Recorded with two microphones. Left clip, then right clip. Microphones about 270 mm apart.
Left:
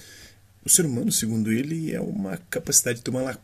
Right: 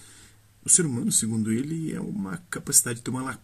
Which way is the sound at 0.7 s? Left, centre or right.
Centre.